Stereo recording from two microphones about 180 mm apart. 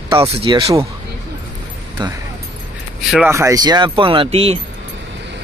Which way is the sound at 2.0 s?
25° right (ahead or behind).